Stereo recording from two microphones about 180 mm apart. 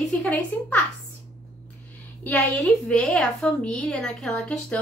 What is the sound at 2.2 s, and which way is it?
A woman's voice, 10° left (ahead or behind).